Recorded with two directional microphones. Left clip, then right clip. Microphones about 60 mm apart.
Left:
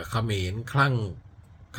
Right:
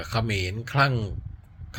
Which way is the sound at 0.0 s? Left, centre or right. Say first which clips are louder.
Right 2 dB; left.